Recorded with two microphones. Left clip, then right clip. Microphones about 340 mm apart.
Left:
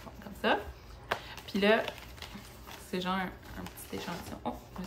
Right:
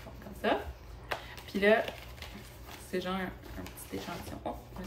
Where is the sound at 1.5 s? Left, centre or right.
Centre.